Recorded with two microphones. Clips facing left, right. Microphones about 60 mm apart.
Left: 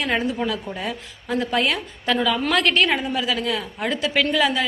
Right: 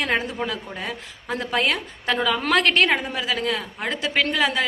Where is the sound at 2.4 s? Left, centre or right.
Right.